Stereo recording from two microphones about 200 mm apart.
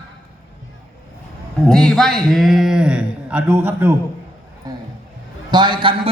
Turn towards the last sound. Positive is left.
turn(degrees=-25)  # may be behind; listen again after turning